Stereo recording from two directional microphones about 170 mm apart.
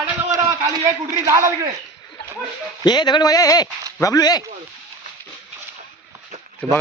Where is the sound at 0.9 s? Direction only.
20° right (ahead or behind).